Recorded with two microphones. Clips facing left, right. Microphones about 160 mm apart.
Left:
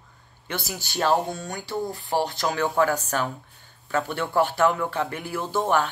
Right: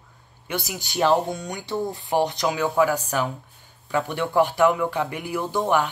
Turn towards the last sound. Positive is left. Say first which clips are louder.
# right 1 dB
turn(degrees=-15)  # may be behind; listen again after turning